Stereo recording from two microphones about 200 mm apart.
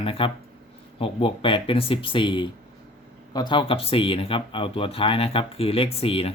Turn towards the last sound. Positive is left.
turn(degrees=30)  # may be behind; listen again after turning